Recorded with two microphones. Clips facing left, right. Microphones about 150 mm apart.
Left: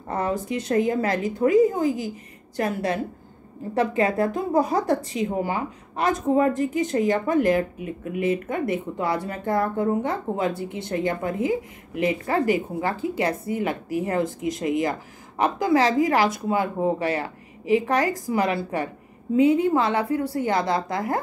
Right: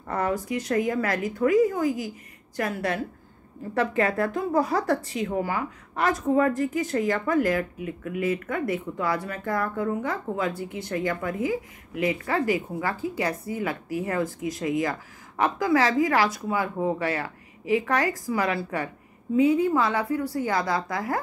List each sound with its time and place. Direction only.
0.1 s speech: 25° left (ahead or behind)